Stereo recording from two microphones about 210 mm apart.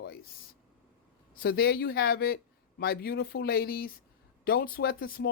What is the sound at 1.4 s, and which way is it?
Speech, 50° left (ahead or behind).